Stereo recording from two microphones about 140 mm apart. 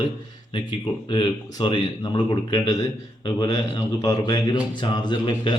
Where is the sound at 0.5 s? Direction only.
35° left (ahead or behind).